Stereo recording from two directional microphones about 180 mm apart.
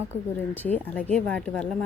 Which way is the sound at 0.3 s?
10° left (ahead or behind).